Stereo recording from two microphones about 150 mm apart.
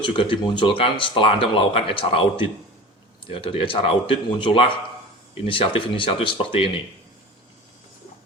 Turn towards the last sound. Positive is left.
turn(degrees=35)  # may be behind; listen again after turning